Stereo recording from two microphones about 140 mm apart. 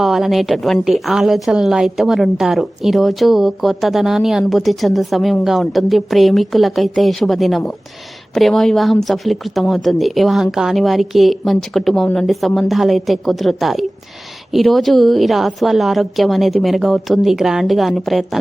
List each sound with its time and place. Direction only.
0.0 s a woman's voice: centre (ahead or behind)